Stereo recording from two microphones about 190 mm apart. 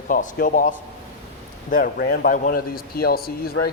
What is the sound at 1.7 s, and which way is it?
Speech, 50° left (ahead or behind).